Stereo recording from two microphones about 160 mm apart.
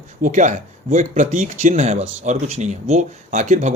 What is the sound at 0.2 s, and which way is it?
Speech, 50° right (ahead or behind).